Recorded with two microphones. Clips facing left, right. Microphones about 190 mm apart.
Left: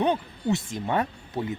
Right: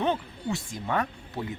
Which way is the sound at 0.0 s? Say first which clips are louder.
Left 3 dB; 20° left (ahead or behind).